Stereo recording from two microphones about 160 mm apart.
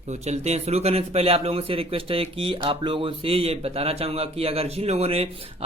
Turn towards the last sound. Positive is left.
turn(degrees=-40)  # may be behind; listen again after turning